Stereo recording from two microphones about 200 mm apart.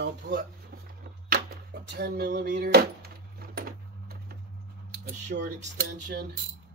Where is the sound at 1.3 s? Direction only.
55° right (ahead or behind).